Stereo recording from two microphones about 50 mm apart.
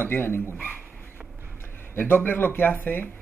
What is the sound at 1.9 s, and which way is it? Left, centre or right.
Speech, left.